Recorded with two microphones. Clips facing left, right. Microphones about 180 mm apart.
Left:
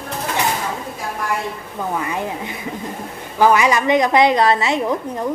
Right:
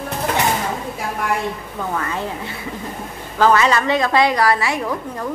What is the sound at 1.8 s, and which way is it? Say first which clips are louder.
A woman's voice: left 2 dB; 15° left (ahead or behind).